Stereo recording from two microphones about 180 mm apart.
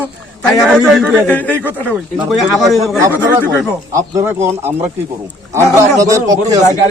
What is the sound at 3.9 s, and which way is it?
Speech, 15° right (ahead or behind).